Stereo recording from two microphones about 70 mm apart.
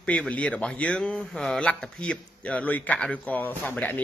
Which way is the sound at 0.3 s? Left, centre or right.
Centre.